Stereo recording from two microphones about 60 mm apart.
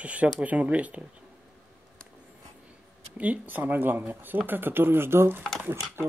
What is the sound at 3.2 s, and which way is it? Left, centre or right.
Speech, right.